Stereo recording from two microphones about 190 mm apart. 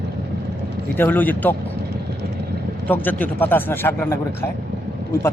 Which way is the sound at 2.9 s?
10° left (ahead or behind).